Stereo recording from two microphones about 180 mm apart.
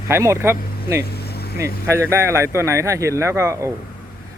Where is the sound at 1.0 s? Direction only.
60° left (ahead or behind).